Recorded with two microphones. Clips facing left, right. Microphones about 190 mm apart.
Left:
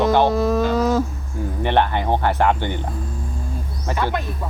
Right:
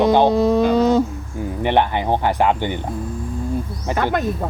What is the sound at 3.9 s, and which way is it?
Speech, 15° right (ahead or behind).